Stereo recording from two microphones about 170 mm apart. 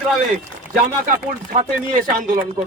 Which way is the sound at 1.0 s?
55° right (ahead or behind).